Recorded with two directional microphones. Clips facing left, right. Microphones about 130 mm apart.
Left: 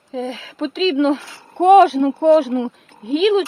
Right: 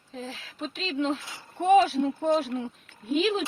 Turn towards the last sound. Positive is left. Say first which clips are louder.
# left 10 dB
turn(degrees=90)